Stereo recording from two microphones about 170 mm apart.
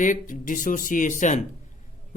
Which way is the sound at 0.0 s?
50° left (ahead or behind).